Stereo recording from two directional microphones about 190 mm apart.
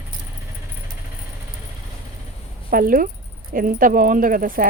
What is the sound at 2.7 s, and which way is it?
A woman's voice, 45° right (ahead or behind).